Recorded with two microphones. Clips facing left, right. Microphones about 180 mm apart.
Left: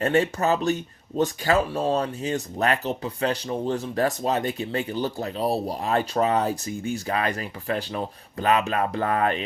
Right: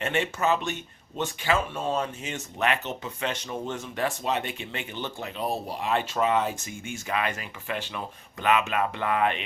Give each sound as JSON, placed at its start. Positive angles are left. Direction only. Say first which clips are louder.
{"t": 0.0, "sound": "speech", "louder": "left 5 dB", "side_deg": 40}